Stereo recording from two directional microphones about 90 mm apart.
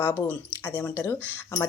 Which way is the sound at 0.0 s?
20° left (ahead or behind).